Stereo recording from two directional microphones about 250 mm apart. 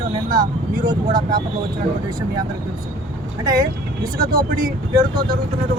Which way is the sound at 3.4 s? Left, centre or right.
Centre.